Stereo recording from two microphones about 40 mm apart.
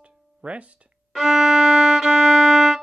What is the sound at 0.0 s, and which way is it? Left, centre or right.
Music, right.